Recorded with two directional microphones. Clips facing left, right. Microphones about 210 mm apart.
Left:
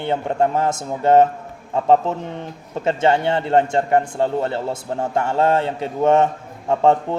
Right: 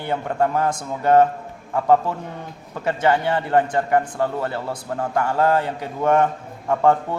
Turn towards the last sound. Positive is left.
turn(degrees=25)  # may be behind; listen again after turning